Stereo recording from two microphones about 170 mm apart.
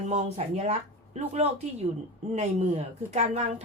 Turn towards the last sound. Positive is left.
turn(degrees=-40)  # may be behind; listen again after turning